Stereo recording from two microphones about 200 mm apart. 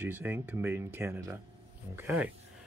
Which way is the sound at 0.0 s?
10° right (ahead or behind).